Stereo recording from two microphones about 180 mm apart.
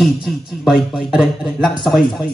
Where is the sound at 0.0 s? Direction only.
Centre (ahead or behind).